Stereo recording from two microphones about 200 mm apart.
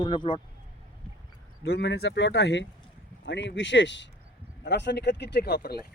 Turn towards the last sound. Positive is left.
turn(degrees=50)  # may be behind; listen again after turning